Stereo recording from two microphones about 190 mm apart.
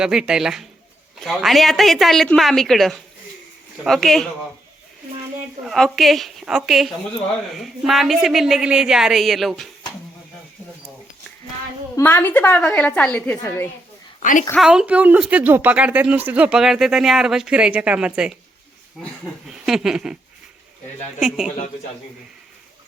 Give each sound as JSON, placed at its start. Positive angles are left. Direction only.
{"t": 0.0, "sound": "speech", "side_deg": -5}
{"t": 5.6, "sound": "speech", "side_deg": 0}
{"t": 11.9, "sound": "a woman's voice", "side_deg": 10}
{"t": 14.2, "sound": "a woman's voice", "side_deg": 45}
{"t": 14.6, "sound": "speech", "side_deg": -5}
{"t": 21.2, "sound": "speech", "side_deg": 0}